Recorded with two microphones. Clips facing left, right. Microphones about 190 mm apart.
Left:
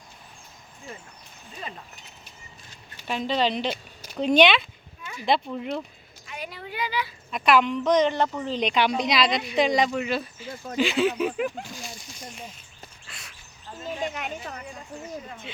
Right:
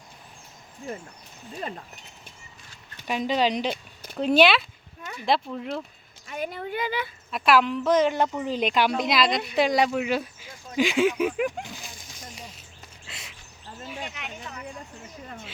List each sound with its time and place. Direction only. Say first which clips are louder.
3.1 s a woman's voice: right 1 dB; 10° right (ahead or behind)
6.2 s speech: right 6 dB; 50° right (ahead or behind)
7.3 s a woman's voice: even; centre (ahead or behind)
13.1 s duck: right 6 dB; 20° right (ahead or behind)
14.0 s a sound: left 6 dB; 45° left (ahead or behind)